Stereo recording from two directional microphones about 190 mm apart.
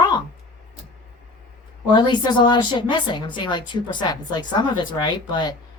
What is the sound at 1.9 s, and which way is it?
A woman's voice, 25° left (ahead or behind).